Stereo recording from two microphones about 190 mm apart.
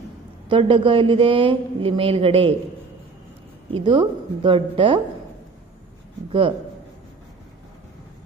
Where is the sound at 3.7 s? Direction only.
25° right (ahead or behind).